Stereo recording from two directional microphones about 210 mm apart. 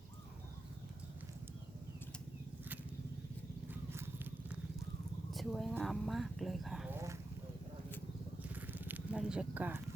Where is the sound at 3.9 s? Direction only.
10° right (ahead or behind).